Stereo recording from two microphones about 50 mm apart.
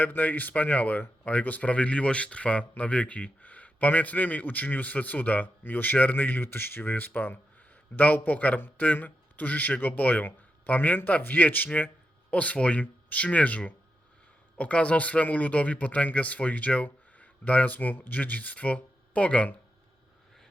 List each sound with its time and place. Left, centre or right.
0.0 s a man's voice: left